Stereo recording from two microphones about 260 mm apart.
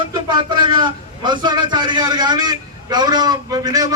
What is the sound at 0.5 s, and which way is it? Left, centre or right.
A man's voice, centre.